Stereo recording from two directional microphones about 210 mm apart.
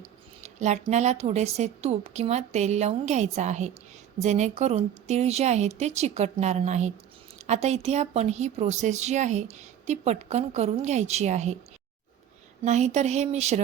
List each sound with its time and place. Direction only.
0.0 s speech: 30° right (ahead or behind)
12.6 s speech: 35° right (ahead or behind)